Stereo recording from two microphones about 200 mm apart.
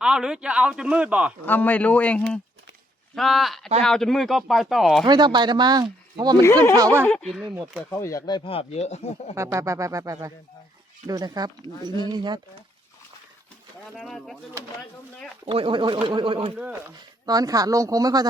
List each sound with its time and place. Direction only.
0.0 s speech: 5° right (ahead or behind)
1.5 s speech: 10° left (ahead or behind)
5.0 s speech: 20° right (ahead or behind)
7.0 s speech: 5° left (ahead or behind)
7.9 s speech: 15° left (ahead or behind)
8.4 s speech: 30° left (ahead or behind)
9.3 s speech: 15° right (ahead or behind)
13.9 s speech: centre (ahead or behind)
15.4 s speech: 25° right (ahead or behind)